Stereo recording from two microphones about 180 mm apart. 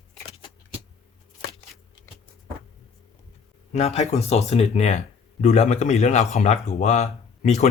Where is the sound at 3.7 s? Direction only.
40° left (ahead or behind).